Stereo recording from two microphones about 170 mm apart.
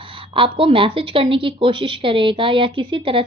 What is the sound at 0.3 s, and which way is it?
A woman's voice, 30° right (ahead or behind).